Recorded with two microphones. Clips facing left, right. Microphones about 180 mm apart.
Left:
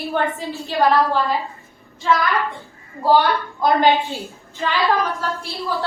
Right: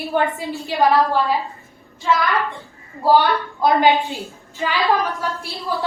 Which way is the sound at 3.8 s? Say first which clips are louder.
Even; 15° right (ahead or behind).